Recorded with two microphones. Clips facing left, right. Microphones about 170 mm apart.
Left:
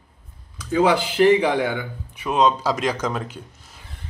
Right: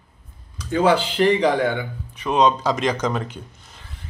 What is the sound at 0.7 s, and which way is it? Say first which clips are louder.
Speech: even; 10° left (ahead or behind).